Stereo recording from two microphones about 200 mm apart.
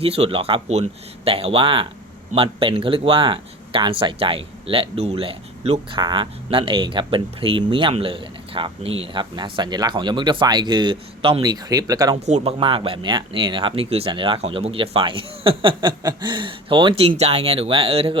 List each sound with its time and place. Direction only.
0.0 s speech: 30° right (ahead or behind)